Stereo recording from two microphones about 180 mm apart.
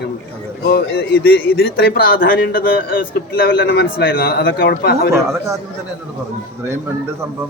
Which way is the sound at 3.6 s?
75° left (ahead or behind).